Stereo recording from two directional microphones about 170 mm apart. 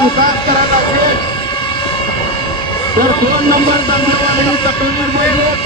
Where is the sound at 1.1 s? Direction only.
30° left (ahead or behind).